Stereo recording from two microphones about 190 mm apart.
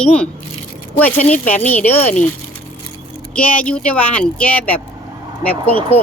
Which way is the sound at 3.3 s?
5° left (ahead or behind).